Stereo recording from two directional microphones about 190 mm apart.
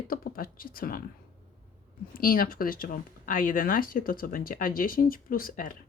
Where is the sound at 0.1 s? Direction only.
50° left (ahead or behind).